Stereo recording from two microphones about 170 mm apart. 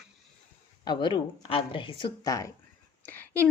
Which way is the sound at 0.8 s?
25° left (ahead or behind).